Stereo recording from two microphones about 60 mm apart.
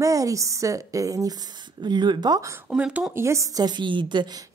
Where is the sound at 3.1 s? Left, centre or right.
Right.